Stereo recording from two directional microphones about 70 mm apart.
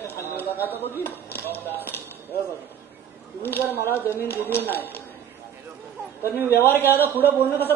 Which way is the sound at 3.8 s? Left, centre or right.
Left.